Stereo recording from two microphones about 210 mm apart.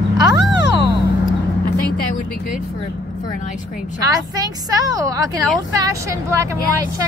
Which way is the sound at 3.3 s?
35° left (ahead or behind).